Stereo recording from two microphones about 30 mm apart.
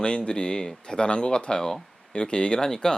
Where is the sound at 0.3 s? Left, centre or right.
Left.